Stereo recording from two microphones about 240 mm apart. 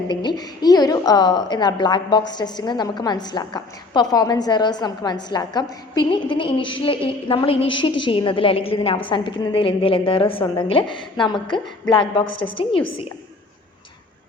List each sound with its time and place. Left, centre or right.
0.1 s a woman's voice: centre